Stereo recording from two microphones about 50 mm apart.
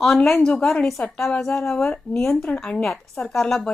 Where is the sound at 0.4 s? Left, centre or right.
Centre.